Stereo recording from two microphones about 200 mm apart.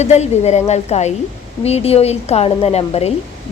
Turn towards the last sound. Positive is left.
turn(degrees=30)  # may be behind; listen again after turning